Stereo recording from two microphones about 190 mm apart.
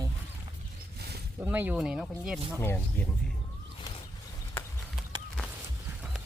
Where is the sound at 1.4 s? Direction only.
10° right (ahead or behind).